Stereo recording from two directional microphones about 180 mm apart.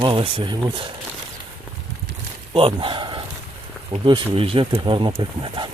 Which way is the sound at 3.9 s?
30° right (ahead or behind).